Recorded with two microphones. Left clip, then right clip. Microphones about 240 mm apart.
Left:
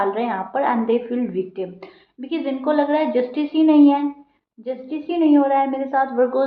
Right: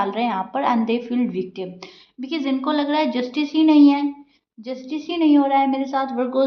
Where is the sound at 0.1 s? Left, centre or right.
Right.